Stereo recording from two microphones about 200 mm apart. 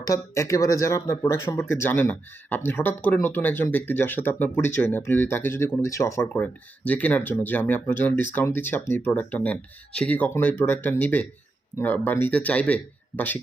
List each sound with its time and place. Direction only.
0.0 s speech: 15° left (ahead or behind)